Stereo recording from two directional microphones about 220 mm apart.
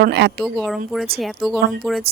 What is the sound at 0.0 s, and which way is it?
Speech, 50° right (ahead or behind).